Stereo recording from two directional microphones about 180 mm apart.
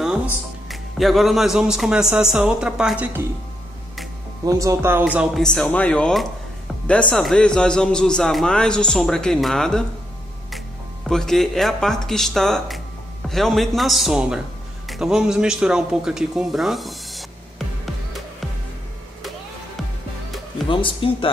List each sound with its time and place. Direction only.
0.7 s a man's voice: centre (ahead or behind)
4.5 s a man's voice: 20° right (ahead or behind); by 9.8 s 5° left (ahead or behind)
11.1 s a man's voice: 5° left (ahead or behind)
14.9 s a sound: 5° right (ahead or behind)
20.6 s speech: 30° left (ahead or behind)